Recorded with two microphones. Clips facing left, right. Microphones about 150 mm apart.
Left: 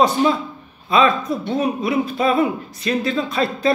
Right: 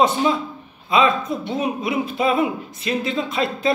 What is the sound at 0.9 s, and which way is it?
Speech, 20° right (ahead or behind).